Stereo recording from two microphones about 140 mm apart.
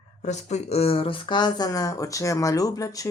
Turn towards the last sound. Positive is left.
turn(degrees=25)  # may be behind; listen again after turning